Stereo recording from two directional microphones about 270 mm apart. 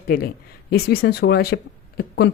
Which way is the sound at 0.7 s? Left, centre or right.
Left.